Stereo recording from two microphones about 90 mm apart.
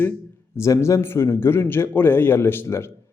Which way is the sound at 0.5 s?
30° left (ahead or behind).